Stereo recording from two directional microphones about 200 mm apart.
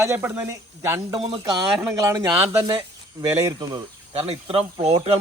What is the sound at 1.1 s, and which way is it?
Speech, 25° right (ahead or behind).